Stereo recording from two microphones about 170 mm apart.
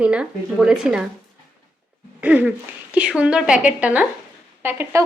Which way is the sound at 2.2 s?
10° right (ahead or behind).